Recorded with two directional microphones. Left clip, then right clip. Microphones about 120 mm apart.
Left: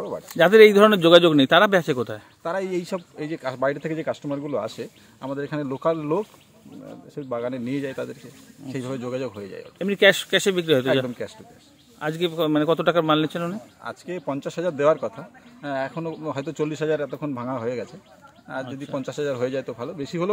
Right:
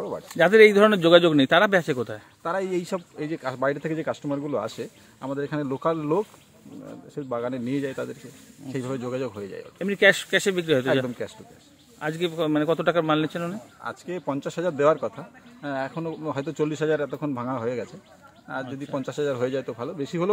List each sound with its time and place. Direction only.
0.3 s speech: 30° left (ahead or behind)
2.4 s a man's voice: centre (ahead or behind)
9.8 s speech: 25° left (ahead or behind)
13.8 s a man's voice: 5° right (ahead or behind)
18.7 s speech: 20° left (ahead or behind)
18.9 s a man's voice: 5° right (ahead or behind)